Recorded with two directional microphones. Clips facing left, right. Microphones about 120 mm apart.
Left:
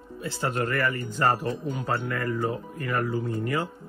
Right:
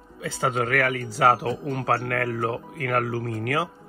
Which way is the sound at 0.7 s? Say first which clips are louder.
Right 3 dB; 90° right.